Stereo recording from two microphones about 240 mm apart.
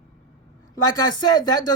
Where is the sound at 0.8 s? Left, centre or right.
Centre.